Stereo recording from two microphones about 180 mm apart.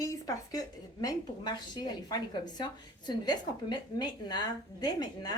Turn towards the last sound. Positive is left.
turn(degrees=20)  # may be behind; listen again after turning